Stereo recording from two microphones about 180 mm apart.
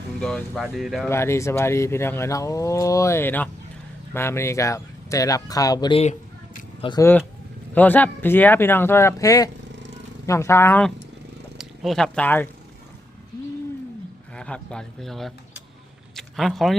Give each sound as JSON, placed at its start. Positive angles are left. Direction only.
{"t": 0.2, "sound": "speech", "side_deg": 5}
{"t": 1.0, "sound": "speech", "side_deg": 15}
{"t": 7.0, "sound": "speech", "side_deg": 10}
{"t": 14.3, "sound": "speech", "side_deg": 5}
{"t": 16.1, "sound": "a sound", "side_deg": 0}